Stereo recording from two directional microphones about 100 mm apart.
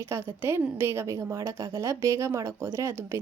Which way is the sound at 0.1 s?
25° right (ahead or behind).